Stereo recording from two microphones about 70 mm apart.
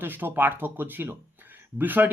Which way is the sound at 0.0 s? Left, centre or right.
Right.